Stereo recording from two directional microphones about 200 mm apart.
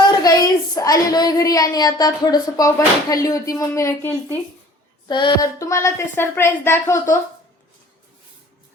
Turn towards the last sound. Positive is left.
turn(degrees=15)  # may be behind; listen again after turning